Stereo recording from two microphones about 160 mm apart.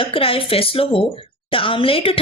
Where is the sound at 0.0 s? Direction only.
35° left (ahead or behind).